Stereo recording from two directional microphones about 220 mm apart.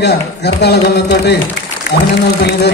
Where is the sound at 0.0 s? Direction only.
50° left (ahead or behind).